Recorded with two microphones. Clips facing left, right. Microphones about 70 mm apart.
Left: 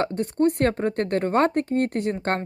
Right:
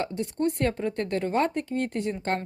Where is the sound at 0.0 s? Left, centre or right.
Left.